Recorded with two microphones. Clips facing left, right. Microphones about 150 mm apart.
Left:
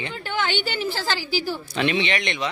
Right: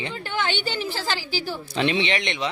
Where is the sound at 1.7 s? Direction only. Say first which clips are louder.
Right 1 dB; 25° right (ahead or behind).